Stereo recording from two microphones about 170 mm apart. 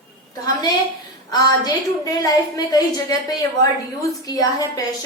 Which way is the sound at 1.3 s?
20° left (ahead or behind).